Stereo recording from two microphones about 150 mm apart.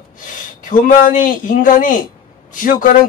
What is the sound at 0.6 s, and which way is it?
A man's voice, 65° left (ahead or behind).